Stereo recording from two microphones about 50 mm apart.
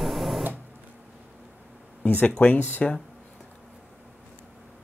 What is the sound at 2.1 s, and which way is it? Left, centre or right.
Speech, left.